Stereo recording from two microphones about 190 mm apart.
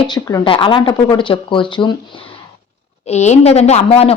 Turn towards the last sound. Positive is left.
turn(degrees=30)  # may be behind; listen again after turning